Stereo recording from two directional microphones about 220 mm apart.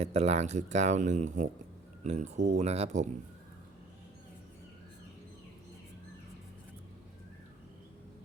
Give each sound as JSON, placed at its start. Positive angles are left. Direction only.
{"t": 0.0, "sound": "speech", "side_deg": -30}